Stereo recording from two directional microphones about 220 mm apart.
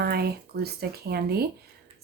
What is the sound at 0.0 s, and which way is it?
Speech, 45° right (ahead or behind).